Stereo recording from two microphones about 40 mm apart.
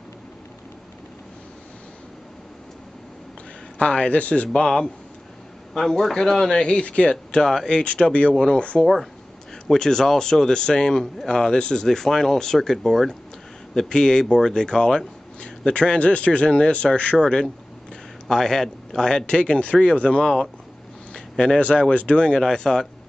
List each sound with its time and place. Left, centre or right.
3.7 s a man's voice: left
4.6 s speech: centre
6.8 s a man's voice: left
7.8 s a man's voice: left
8.8 s speech: centre
9.7 s speech: centre
13.7 s a man's voice: centre
21.1 s a sound: centre
21.5 s a man's voice: left
22.4 s speech: centre